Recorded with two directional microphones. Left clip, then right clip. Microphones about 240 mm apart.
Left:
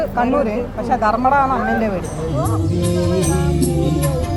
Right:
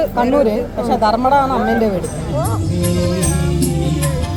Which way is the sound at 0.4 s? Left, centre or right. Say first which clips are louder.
Right 4 dB; right.